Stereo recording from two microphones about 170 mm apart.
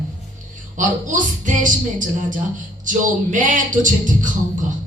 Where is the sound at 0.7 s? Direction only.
50° right (ahead or behind).